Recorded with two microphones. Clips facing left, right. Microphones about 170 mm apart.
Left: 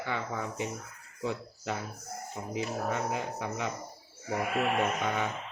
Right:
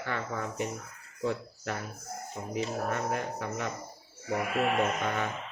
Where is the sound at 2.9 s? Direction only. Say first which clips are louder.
Right 1 dB; 15° left (ahead or behind).